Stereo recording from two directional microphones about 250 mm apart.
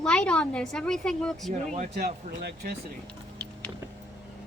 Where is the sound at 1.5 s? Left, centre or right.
Right.